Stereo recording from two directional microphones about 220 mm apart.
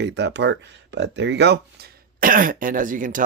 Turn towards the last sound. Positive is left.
turn(degrees=-35)  # may be behind; listen again after turning